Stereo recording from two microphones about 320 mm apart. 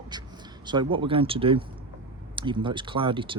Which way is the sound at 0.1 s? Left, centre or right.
Centre.